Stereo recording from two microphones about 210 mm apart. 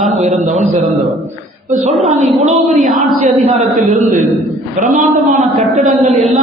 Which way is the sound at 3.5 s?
35° right (ahead or behind).